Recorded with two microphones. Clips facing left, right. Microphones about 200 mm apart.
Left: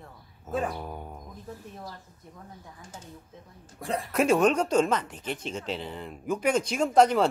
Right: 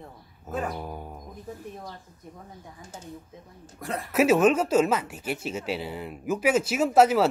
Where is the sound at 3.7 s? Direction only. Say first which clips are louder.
Left 2 dB; 30° left (ahead or behind).